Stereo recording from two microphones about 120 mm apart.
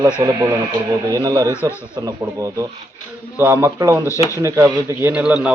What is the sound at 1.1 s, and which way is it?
Speech, 30° right (ahead or behind).